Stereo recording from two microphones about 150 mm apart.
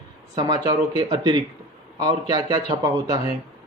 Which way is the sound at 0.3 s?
25° right (ahead or behind).